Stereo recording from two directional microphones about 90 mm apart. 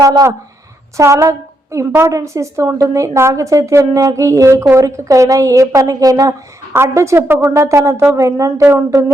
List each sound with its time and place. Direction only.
0.0 s a woman's voice: 40° right (ahead or behind)